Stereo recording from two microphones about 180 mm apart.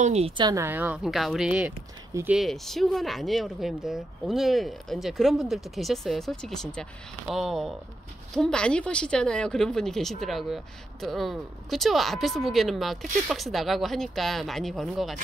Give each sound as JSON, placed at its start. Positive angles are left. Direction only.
{"t": 0.0, "sound": "speech", "side_deg": -35}
{"t": 0.4, "sound": "a woman's voice", "side_deg": -20}